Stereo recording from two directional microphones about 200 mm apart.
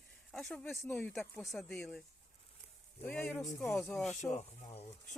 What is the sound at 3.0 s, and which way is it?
Speech, 10° left (ahead or behind).